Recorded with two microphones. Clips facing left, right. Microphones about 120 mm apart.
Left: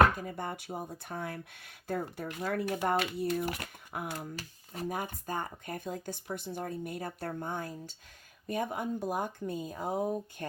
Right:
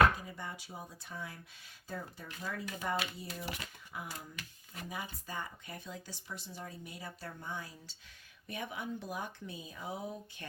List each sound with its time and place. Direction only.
0.2 s speech: 50° left (ahead or behind)
4.4 s speech: 35° left (ahead or behind)
4.9 s speech: 50° left (ahead or behind)